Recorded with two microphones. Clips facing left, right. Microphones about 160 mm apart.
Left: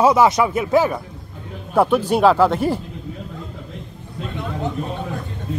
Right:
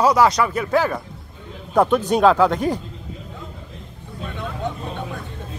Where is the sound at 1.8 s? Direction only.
10° left (ahead or behind).